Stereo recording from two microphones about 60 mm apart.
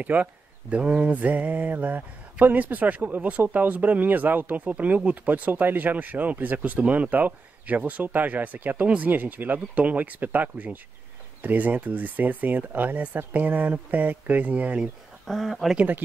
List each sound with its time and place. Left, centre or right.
0.0 s speech: right
14.8 s speech: centre